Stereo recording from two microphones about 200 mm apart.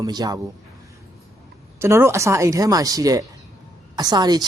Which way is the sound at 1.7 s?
15° right (ahead or behind).